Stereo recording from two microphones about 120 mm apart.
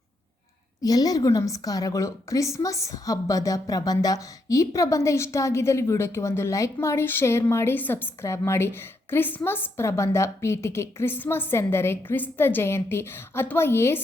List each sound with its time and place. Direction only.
0.8 s a woman's voice: 30° left (ahead or behind)